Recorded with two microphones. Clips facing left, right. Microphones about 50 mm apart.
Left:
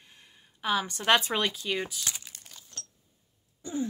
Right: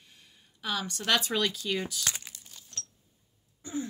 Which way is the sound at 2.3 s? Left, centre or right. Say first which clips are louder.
Left 1 dB; left.